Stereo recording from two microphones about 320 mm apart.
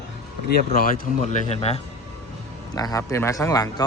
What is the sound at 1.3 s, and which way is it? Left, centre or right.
Speech, centre.